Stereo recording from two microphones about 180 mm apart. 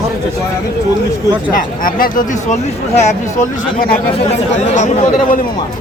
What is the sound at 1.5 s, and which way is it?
Speech, 50° left (ahead or behind).